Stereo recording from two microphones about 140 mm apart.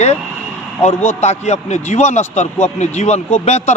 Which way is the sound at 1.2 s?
50° left (ahead or behind).